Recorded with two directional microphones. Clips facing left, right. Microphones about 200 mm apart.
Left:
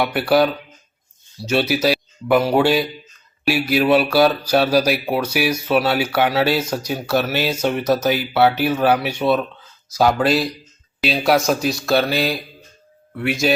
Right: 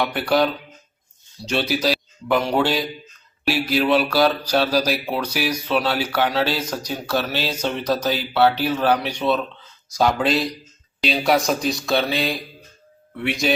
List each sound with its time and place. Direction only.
0.0 s speech: 10° left (ahead or behind)